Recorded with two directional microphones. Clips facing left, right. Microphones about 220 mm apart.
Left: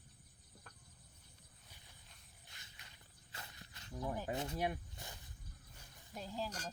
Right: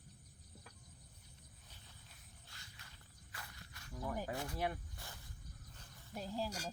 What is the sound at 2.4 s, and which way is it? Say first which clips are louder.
Walk: even; 20° left (ahead or behind).